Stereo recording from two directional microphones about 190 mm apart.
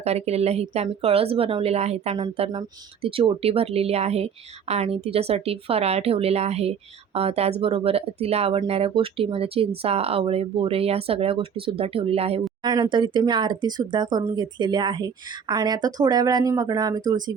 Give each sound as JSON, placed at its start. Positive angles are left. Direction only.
{"t": 0.0, "sound": "a woman's voice", "side_deg": -35}